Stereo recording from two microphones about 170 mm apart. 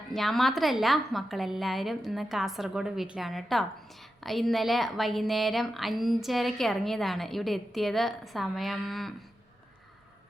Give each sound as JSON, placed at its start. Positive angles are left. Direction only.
{"t": 0.1, "sound": "speech", "side_deg": 0}